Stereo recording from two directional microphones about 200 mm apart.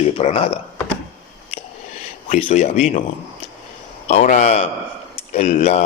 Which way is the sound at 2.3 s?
35° left (ahead or behind).